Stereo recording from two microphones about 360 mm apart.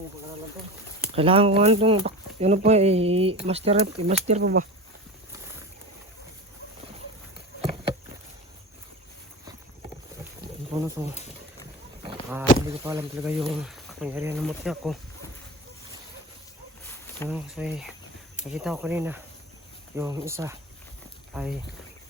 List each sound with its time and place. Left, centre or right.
1.1 s speech: centre
10.8 s speech: centre
12.0 s a sound: centre
12.6 s speech: centre
17.2 s speech: centre